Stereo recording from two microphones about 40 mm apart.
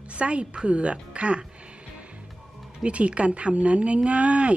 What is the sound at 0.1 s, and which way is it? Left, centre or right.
A woman's voice, right.